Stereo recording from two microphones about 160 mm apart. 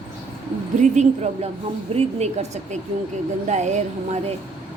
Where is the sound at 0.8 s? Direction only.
45° right (ahead or behind).